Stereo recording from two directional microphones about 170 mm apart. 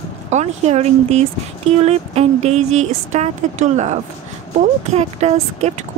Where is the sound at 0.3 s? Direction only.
40° right (ahead or behind).